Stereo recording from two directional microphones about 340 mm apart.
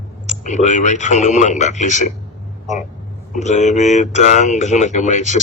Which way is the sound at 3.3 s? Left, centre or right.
Left.